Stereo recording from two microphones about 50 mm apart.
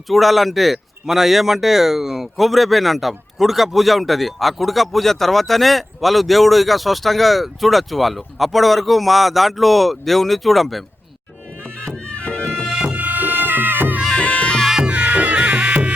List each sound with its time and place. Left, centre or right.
0.1 s speech: centre
12.0 s music: left
12.8 s music: right
14.2 s music: left
14.7 s music: centre
14.9 s music: right